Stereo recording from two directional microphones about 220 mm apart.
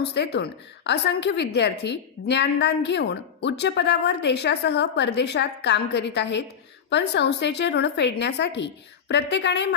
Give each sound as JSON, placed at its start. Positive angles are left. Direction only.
{"t": 0.0, "sound": "a woman's voice", "side_deg": 50}